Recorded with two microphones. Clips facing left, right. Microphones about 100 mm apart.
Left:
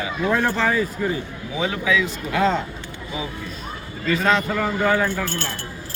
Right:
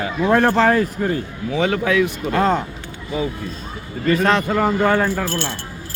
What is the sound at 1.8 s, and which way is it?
Speech, 60° right (ahead or behind).